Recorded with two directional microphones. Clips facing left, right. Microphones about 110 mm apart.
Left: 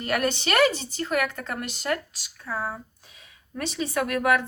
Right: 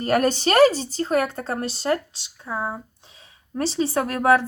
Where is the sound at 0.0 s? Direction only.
40° right (ahead or behind).